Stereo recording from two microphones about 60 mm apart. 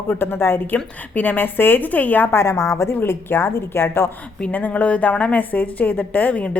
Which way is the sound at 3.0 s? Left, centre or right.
Left.